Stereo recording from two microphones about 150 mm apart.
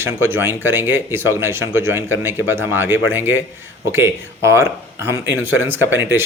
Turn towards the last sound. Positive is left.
turn(degrees=-15)  # may be behind; listen again after turning